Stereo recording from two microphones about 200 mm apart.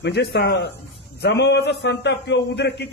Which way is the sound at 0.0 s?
55° left (ahead or behind).